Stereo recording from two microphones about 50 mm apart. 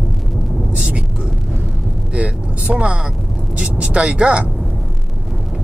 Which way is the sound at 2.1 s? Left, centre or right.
Right.